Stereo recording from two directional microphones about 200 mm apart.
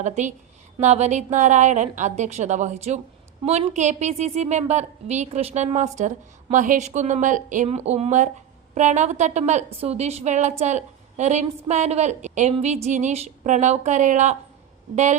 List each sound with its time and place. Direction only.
0.0 s a woman's voice: 35° right (ahead or behind)